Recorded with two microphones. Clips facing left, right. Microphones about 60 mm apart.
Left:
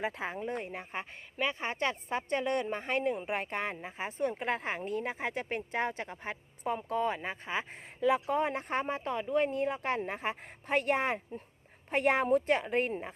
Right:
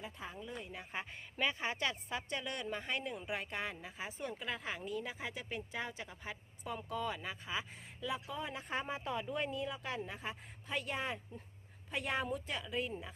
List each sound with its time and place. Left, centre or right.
0.0 s speech: left
1.5 s speech: left